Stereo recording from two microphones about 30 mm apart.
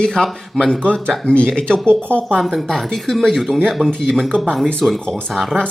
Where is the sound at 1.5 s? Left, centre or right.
Left.